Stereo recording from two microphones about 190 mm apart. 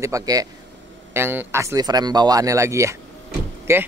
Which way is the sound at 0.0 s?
20° right (ahead or behind).